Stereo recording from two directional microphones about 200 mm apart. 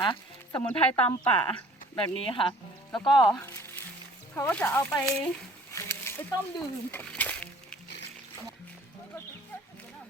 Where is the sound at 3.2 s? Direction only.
10° left (ahead or behind).